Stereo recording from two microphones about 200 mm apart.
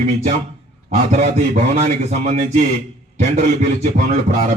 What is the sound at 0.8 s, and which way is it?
A man's voice, 35° right (ahead or behind).